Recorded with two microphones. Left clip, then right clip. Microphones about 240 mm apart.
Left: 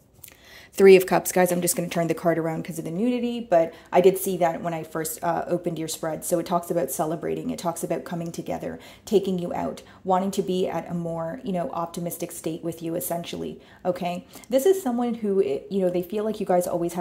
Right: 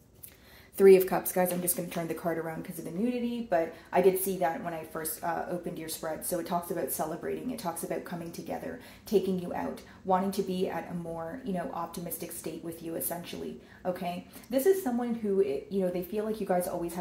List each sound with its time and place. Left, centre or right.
0.7 s speech: left